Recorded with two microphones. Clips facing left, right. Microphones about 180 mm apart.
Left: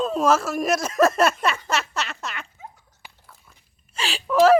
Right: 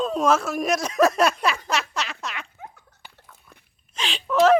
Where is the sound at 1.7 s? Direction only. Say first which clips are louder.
Even; 5° left (ahead or behind).